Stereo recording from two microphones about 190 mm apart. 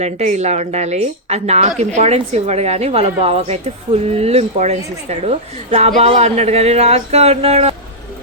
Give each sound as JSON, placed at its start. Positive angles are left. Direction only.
{"t": 0.0, "sound": "a woman's voice", "side_deg": -35}